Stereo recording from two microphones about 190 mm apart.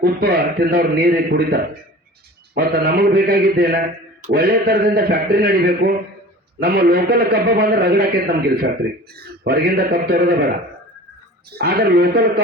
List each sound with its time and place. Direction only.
0.0 s a man's voice: 55° right (ahead or behind)
11.5 s a man's voice: 55° right (ahead or behind)